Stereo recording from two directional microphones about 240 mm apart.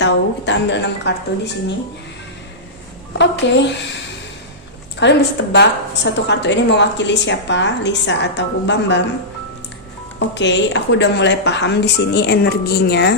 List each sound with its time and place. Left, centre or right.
0.0 s a woman's voice: left
3.1 s a woman's voice: left
4.9 s a woman's voice: left
10.2 s a woman's voice: left